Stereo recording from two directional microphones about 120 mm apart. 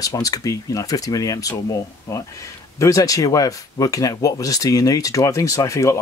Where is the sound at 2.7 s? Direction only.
25° left (ahead or behind).